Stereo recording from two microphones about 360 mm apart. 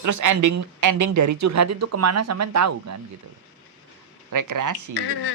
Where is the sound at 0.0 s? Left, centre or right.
Right.